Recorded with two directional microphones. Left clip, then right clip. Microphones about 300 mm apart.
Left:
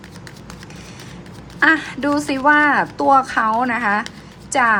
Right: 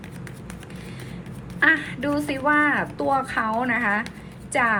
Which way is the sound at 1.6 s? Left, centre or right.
Centre.